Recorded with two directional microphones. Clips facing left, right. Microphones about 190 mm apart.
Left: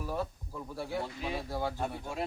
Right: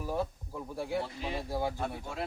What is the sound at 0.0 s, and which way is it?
Speech, 15° right (ahead or behind).